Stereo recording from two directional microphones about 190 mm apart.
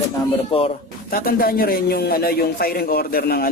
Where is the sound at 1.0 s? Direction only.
50° left (ahead or behind).